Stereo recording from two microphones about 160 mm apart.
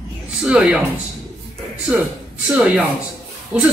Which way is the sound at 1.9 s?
10° right (ahead or behind).